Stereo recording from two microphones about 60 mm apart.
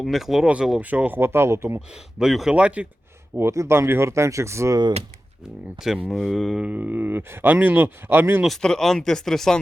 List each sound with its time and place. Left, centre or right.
0.0 s speech: centre
0.4 s speech: centre
1.2 s speech: right
2.1 s speech: centre
2.6 s speech: right
3.3 s speech: right
6.1 s speech: centre
6.6 s speech: right
7.5 s speech: right
7.8 s speech: right
8.6 s speech: centre